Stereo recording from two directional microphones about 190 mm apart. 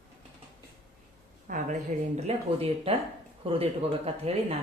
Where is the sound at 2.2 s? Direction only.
30° right (ahead or behind).